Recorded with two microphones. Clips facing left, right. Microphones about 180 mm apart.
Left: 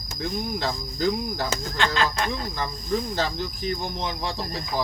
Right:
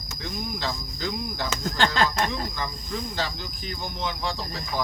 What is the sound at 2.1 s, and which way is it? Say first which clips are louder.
Speech: even; 40° left (ahead or behind).